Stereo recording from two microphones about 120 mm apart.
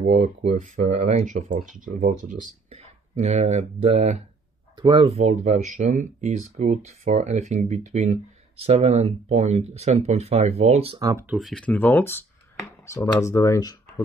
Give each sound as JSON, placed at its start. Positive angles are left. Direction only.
{"t": 0.0, "sound": "speech", "side_deg": -80}
{"t": 2.7, "sound": "speech", "side_deg": -65}
{"t": 4.7, "sound": "speech", "side_deg": -35}
{"t": 5.0, "sound": "speech", "side_deg": -65}
{"t": 8.6, "sound": "speech", "side_deg": -65}
{"t": 11.3, "sound": "speech", "side_deg": 0}
{"t": 11.6, "sound": "speech", "side_deg": 15}